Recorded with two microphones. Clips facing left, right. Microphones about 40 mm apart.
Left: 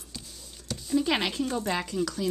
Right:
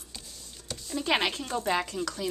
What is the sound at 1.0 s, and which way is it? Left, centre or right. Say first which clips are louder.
Speech: even; centre.